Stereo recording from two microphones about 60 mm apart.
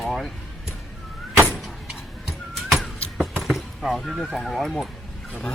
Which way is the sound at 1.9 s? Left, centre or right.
Centre.